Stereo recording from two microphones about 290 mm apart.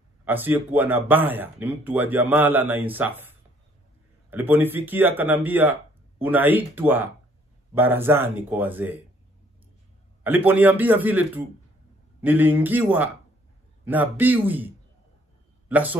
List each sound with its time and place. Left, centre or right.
0.2 s speech: centre
4.3 s speech: centre
10.2 s speech: centre
15.7 s speech: centre